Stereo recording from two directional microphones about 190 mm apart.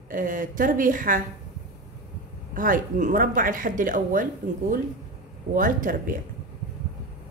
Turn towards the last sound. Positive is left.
turn(degrees=-45)  # may be behind; listen again after turning